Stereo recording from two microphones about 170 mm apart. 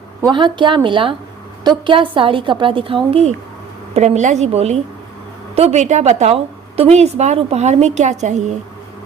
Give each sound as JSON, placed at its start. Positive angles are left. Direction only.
{"t": 0.2, "sound": "a woman's voice", "side_deg": -25}